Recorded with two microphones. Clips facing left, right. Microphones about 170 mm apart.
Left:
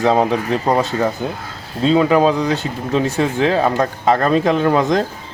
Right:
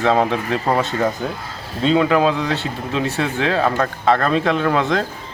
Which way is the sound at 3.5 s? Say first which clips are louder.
Left 2 dB; 15° left (ahead or behind).